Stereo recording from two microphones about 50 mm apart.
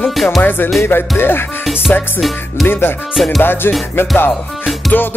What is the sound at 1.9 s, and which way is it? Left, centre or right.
Music, left.